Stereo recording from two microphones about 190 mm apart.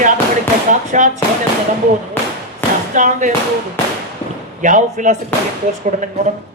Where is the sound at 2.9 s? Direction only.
40° right (ahead or behind).